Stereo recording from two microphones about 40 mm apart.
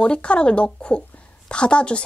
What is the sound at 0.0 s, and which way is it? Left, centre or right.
A child's voice, left.